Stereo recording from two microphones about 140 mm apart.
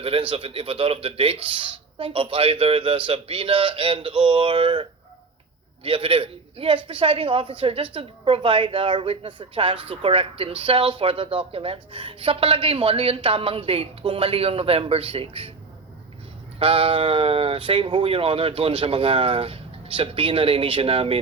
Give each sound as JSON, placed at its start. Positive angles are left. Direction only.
{"t": 0.0, "sound": "speech", "side_deg": -40}
{"t": 16.6, "sound": "speech", "side_deg": -40}